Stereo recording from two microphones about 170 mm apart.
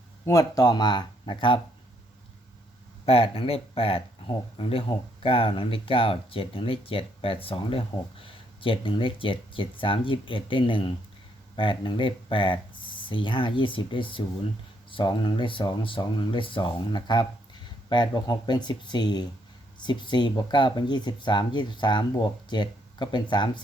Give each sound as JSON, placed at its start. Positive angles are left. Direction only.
{"t": 0.3, "sound": "speech", "side_deg": 20}
{"t": 3.1, "sound": "speech", "side_deg": 35}